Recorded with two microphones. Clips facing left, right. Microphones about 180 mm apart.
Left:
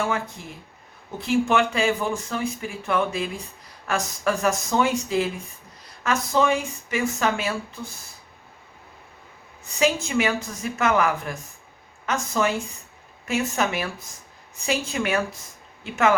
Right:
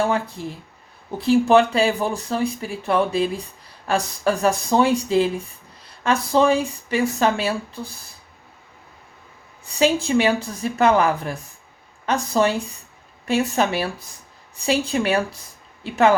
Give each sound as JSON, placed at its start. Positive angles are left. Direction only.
{"t": 0.0, "sound": "speech", "side_deg": -35}
{"t": 9.7, "sound": "speech", "side_deg": -30}